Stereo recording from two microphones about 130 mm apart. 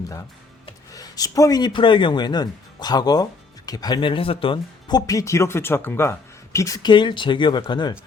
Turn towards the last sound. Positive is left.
turn(degrees=35)  # may be behind; listen again after turning